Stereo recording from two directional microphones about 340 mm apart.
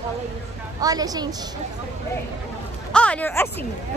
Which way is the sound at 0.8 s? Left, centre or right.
Centre.